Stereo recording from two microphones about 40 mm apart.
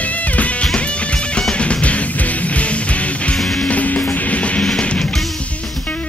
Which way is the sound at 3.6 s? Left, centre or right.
Left.